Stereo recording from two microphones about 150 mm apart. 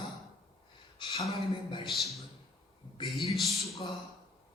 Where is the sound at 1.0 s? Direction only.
30° left (ahead or behind).